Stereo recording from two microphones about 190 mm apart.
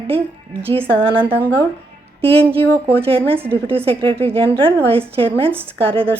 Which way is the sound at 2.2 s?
30° right (ahead or behind).